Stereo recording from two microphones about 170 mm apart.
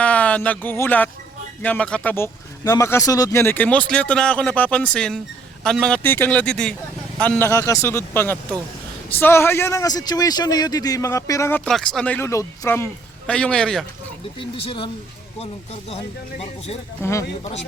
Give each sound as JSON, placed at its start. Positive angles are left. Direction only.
{"t": 0.0, "sound": "speech", "side_deg": 10}
{"t": 14.3, "sound": "speech", "side_deg": 30}
{"t": 17.0, "sound": "speech", "side_deg": 15}